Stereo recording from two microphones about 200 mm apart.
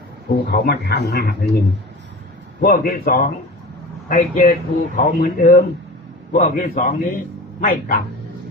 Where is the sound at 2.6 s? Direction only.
45° left (ahead or behind).